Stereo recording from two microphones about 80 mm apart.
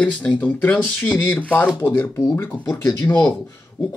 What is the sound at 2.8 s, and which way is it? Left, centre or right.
Speech, left.